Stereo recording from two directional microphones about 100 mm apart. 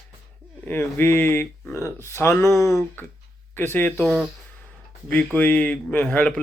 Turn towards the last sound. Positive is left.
turn(degrees=10)  # may be behind; listen again after turning